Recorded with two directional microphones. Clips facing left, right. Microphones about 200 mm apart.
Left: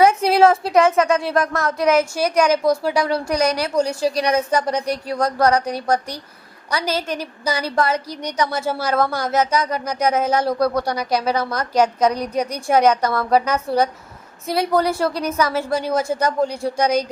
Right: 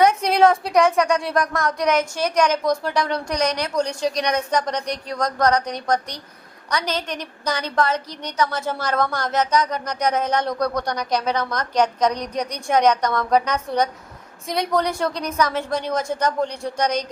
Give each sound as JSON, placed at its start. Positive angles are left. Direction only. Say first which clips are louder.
{"t": 0.0, "sound": "a woman's voice", "louder": "left 2 dB", "side_deg": 5}